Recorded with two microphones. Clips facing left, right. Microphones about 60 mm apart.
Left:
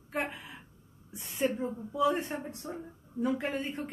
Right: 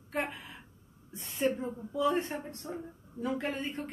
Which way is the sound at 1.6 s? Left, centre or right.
Centre.